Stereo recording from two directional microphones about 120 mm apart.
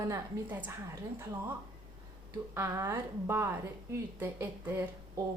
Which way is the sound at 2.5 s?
20° right (ahead or behind).